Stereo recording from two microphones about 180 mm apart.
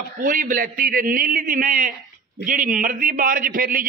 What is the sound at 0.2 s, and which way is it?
A man's voice, 50° right (ahead or behind).